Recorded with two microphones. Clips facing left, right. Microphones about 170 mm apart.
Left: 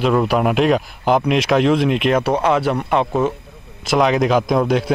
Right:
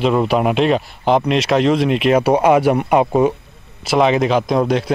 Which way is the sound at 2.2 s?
15° right (ahead or behind).